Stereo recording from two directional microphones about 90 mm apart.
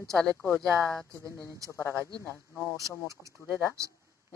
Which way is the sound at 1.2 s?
35° right (ahead or behind).